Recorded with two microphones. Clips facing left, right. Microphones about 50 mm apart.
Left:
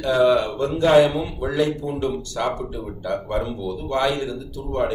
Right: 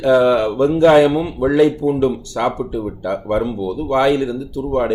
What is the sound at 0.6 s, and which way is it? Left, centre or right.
Speech, right.